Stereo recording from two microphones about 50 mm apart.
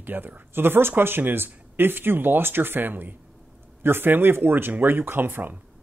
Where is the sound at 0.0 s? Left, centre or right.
Right.